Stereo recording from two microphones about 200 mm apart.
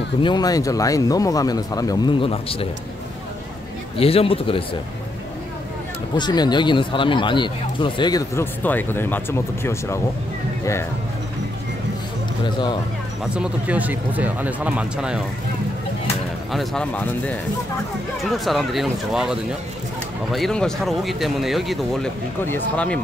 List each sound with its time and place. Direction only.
0.2 s speech: 20° left (ahead or behind)
4.0 s speech: 30° left (ahead or behind)
6.1 s speech: 20° left (ahead or behind)
8.6 s speech: 10° left (ahead or behind)
12.4 s speech: 20° left (ahead or behind)
13.3 s speech: 5° right (ahead or behind)
16.5 s speech: 5° left (ahead or behind)
18.4 s speech: centre (ahead or behind)